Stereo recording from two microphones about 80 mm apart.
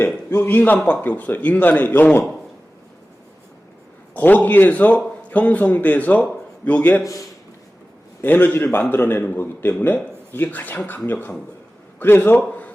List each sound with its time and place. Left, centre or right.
0.0 s a man's voice: left
4.1 s a man's voice: left
7.0 s a man's voice: left
8.2 s a man's voice: left